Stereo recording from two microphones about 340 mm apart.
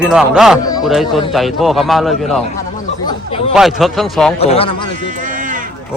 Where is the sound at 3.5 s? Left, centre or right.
Centre.